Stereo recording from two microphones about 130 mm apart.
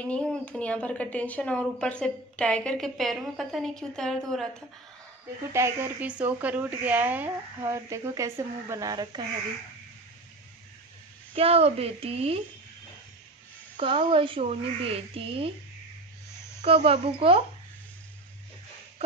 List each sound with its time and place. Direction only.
0.0 s a woman's voice: 10° left (ahead or behind)
5.5 s a woman's voice: 20° right (ahead or behind)
11.3 s a woman's voice: 50° right (ahead or behind)
13.7 s a woman's voice: 40° right (ahead or behind)
16.6 s a woman's voice: 50° right (ahead or behind)